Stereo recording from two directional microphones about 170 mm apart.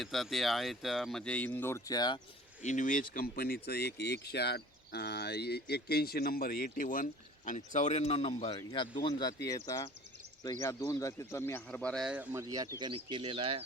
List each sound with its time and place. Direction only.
0.0 s speech: centre (ahead or behind); by 2.2 s 25° left (ahead or behind)
2.6 s speech: 45° left (ahead or behind); by 12.0 s 5° left (ahead or behind)
12.0 s speech: 10° right (ahead or behind); by 13.6 s 30° right (ahead or behind)